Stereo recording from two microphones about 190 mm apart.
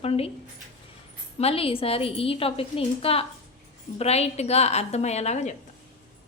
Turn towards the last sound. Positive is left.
turn(degrees=35)  # may be behind; listen again after turning